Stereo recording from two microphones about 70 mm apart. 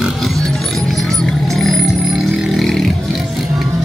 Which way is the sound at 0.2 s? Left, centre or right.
Centre.